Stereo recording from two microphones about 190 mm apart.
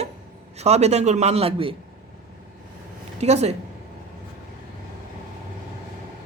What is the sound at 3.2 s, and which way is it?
Speech, 35° right (ahead or behind).